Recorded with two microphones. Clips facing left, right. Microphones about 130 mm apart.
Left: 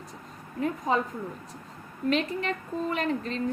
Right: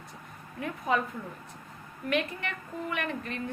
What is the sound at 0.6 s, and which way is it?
Speech, 30° left (ahead or behind).